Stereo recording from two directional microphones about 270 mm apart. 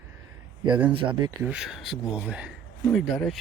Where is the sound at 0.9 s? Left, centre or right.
Centre.